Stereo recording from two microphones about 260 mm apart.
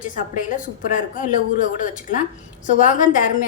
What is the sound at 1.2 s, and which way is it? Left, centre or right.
Speech, left.